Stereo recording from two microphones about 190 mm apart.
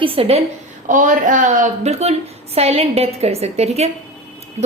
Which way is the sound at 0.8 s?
45° right (ahead or behind).